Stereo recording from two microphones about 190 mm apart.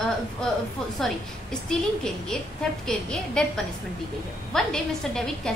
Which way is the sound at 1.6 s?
5° left (ahead or behind).